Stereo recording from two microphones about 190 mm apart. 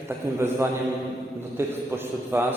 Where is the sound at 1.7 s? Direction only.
15° right (ahead or behind).